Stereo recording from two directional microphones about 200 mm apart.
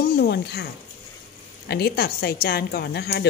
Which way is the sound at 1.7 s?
55° left (ahead or behind).